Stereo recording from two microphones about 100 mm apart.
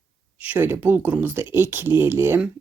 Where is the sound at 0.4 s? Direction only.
20° right (ahead or behind).